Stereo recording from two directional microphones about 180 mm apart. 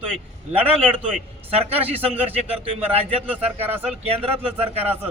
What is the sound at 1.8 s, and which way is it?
Speech, 10° right (ahead or behind).